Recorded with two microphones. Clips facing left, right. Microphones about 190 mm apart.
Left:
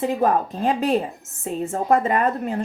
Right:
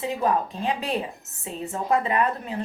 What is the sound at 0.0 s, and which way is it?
A woman's voice, 50° left (ahead or behind).